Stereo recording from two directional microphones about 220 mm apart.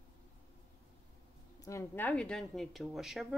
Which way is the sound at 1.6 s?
15° left (ahead or behind).